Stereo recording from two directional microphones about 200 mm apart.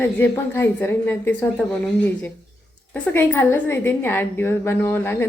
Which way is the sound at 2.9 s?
10° left (ahead or behind).